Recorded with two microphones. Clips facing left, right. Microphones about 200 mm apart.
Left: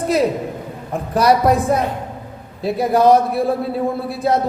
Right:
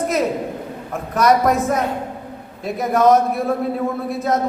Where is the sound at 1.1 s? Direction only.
30° left (ahead or behind).